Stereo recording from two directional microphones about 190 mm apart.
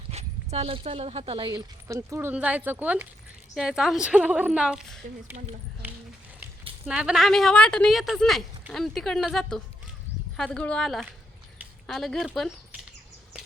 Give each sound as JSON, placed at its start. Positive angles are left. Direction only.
{"t": 0.1, "sound": "speech", "side_deg": -30}
{"t": 5.3, "sound": "speech", "side_deg": -40}
{"t": 5.8, "sound": "a sound", "side_deg": -10}
{"t": 6.8, "sound": "speech", "side_deg": -5}